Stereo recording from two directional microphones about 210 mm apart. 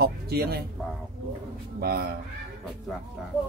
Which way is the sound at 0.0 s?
50° right (ahead or behind).